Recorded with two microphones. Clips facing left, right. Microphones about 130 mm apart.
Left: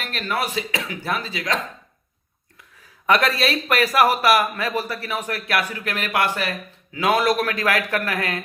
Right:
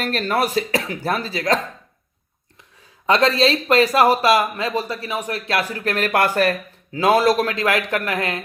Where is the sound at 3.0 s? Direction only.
25° right (ahead or behind); by 6.5 s 45° right (ahead or behind).